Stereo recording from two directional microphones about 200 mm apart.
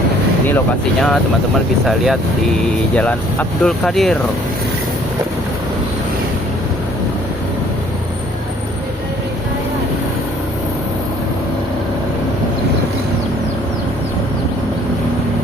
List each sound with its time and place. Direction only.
1.8 s speech: centre (ahead or behind)